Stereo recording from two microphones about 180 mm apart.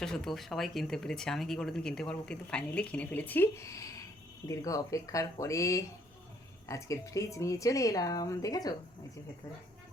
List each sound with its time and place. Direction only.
0.0 s speech: 5° left (ahead or behind); by 8.7 s 20° left (ahead or behind)